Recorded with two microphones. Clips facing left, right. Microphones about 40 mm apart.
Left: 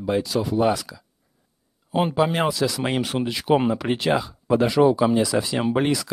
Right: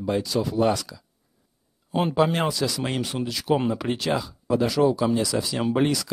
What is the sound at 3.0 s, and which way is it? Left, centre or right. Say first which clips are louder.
Speech: left 3 dB; left.